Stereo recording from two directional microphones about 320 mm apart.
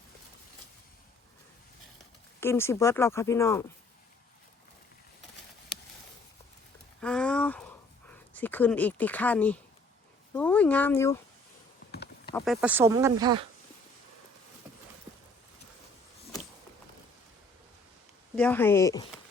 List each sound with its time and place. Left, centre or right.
2.4 s speech: centre
7.0 s a sound: centre
8.1 s speech: centre
11.9 s a sound: left
12.3 s speech: centre
18.3 s speech: centre